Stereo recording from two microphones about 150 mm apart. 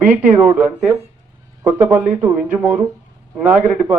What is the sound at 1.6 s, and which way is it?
Speech, 10° right (ahead or behind).